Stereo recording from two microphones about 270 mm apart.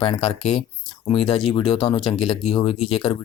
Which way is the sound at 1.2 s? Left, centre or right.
Centre.